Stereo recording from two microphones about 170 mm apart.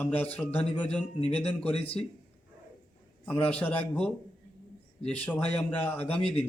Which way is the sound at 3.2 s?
10° left (ahead or behind).